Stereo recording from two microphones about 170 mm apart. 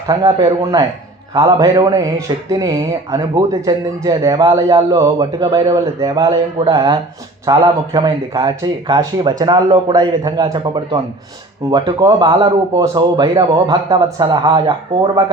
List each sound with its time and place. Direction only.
0.1 s a man's voice: 25° right (ahead or behind)
11.7 s a man's voice: 25° right (ahead or behind)